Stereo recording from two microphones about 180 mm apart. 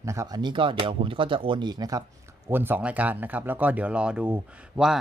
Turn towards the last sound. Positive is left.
turn(degrees=-5)  # may be behind; listen again after turning